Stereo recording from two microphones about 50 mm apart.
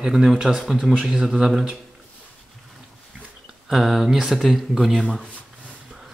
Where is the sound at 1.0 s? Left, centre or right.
Centre.